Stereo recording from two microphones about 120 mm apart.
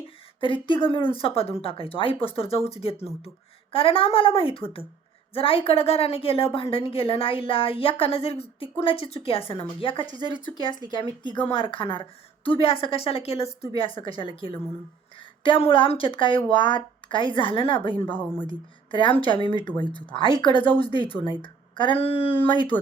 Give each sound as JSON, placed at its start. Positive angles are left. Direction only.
{"t": 0.3, "sound": "a woman's voice", "side_deg": 45}
{"t": 13.7, "sound": "a woman's voice", "side_deg": 50}